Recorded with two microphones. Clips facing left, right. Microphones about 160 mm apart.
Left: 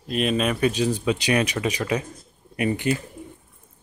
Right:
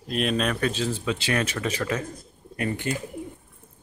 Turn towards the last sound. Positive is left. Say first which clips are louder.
# left 5 dB
turn(degrees=20)  # may be behind; listen again after turning